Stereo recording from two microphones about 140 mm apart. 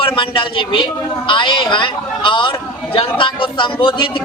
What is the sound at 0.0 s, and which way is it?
A man's voice, 35° left (ahead or behind).